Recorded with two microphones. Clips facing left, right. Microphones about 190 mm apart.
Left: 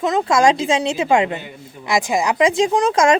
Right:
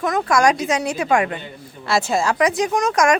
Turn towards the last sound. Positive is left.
turn(degrees=25)  # may be behind; listen again after turning